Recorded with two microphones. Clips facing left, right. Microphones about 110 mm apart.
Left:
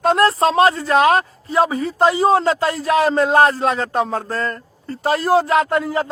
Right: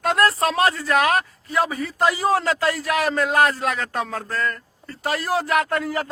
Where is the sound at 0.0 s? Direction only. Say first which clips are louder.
Left 5 dB; 25° left (ahead or behind).